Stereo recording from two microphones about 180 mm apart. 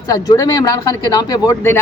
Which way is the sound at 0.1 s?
20° left (ahead or behind).